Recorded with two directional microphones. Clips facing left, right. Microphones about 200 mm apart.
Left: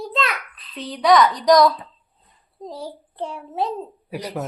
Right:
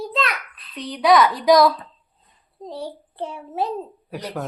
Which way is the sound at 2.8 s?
5° right (ahead or behind).